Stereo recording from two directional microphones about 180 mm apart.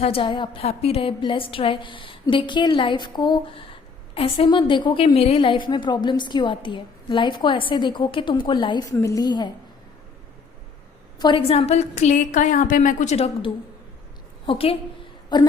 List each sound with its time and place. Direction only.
0.0 s a woman's voice: 30° left (ahead or behind)
11.2 s a woman's voice: 25° left (ahead or behind)